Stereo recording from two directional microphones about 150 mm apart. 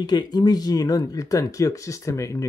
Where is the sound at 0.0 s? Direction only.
30° left (ahead or behind).